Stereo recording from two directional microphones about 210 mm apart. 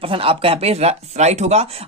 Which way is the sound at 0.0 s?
25° right (ahead or behind).